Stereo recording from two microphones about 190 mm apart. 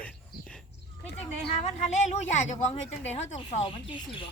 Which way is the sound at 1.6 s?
35° left (ahead or behind).